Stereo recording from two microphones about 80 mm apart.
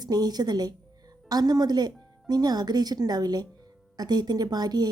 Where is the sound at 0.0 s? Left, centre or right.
Right.